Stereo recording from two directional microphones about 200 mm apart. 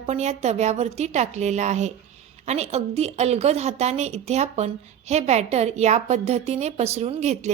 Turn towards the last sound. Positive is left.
turn(degrees=-35)  # may be behind; listen again after turning